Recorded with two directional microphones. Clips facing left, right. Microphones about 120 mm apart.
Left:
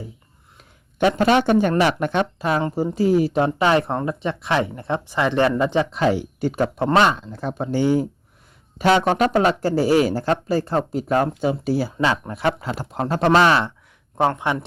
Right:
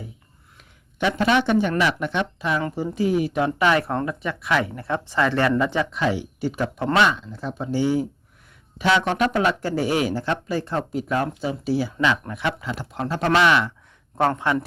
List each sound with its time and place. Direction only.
0.5 s a sound: 45° left (ahead or behind)
1.8 s speech: 50° left (ahead or behind); by 5.9 s 25° left (ahead or behind)
5.9 s speech: 40° left (ahead or behind)
14.2 s a man's voice: 15° left (ahead or behind)